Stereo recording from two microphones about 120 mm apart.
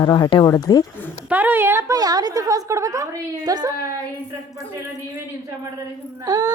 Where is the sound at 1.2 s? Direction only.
15° right (ahead or behind).